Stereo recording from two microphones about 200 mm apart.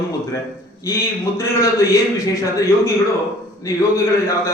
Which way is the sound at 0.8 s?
15° left (ahead or behind).